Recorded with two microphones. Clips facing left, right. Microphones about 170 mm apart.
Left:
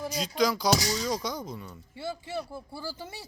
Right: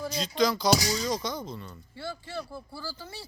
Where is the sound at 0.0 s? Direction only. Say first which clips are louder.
Right 1 dB; 10° left (ahead or behind).